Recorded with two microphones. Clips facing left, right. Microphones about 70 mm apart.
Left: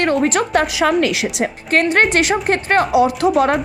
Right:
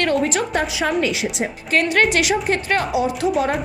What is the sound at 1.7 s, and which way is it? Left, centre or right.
A woman's voice, left.